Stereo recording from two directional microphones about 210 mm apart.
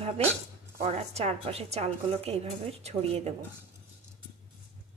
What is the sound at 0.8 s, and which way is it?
A woman's voice, 30° right (ahead or behind).